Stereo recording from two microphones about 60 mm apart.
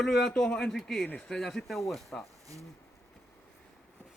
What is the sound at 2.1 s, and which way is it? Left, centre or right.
Speech, left.